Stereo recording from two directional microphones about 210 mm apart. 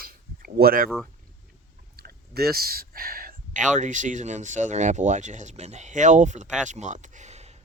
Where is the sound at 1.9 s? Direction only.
50° right (ahead or behind).